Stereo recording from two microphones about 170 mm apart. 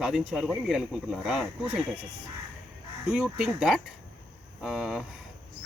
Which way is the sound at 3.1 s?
5° right (ahead or behind).